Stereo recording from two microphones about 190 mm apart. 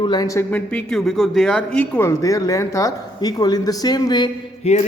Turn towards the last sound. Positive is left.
turn(degrees=35)  # may be behind; listen again after turning